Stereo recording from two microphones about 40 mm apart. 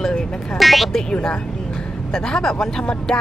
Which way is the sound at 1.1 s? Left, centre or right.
Left.